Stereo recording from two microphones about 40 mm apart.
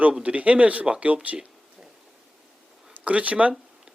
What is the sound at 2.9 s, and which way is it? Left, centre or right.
Speech, right.